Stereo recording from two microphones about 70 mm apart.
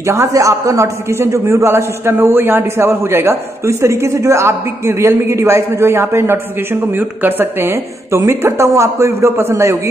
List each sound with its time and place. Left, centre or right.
0.0 s a man's voice: right
0.3 s a man's voice: right